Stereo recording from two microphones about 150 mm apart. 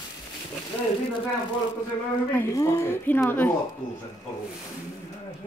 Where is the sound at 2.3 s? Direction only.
20° left (ahead or behind).